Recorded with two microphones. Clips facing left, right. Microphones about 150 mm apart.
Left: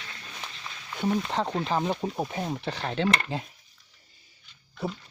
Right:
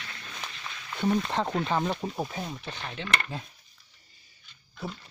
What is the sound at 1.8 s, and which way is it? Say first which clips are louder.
Speech: left 2 dB; 15° left (ahead or behind).